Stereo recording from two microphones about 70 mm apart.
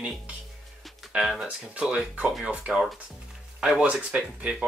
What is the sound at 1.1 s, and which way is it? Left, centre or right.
Speech, centre.